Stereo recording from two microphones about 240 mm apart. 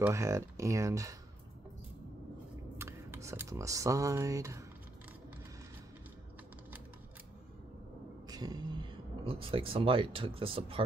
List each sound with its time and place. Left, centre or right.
0.0 s speech: centre
2.8 s speech: centre
8.3 s speech: centre